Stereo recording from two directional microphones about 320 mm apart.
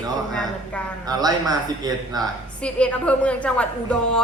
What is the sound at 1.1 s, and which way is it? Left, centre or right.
A man's voice, centre.